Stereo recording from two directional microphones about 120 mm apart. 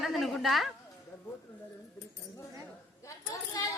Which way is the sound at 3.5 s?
30° left (ahead or behind).